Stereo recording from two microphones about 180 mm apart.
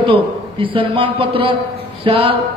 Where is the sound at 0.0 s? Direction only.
30° right (ahead or behind).